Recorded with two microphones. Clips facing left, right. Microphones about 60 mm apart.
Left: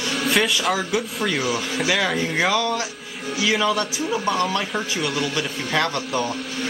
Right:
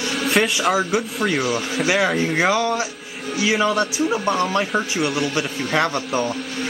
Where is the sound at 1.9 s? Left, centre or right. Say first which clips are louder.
Right 3 dB; centre.